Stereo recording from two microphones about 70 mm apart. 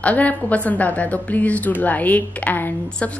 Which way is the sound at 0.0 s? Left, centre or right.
Left.